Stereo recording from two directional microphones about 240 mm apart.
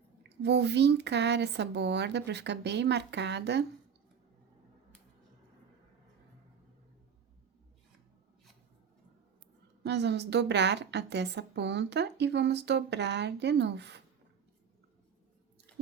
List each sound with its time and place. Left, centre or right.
0.2 s a woman's voice: right
9.8 s a woman's voice: right